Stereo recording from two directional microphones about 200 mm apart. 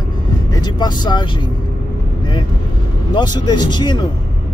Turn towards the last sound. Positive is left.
turn(degrees=20)  # may be behind; listen again after turning